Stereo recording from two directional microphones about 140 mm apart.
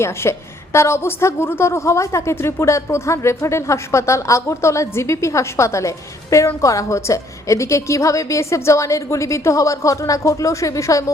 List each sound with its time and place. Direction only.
0.0 s a woman's voice: 20° left (ahead or behind)